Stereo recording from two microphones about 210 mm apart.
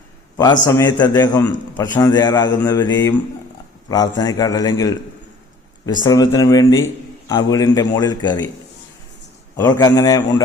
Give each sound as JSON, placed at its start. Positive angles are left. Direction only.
{"t": 0.3, "sound": "a man's voice", "side_deg": 20}
{"t": 9.6, "sound": "a man's voice", "side_deg": 15}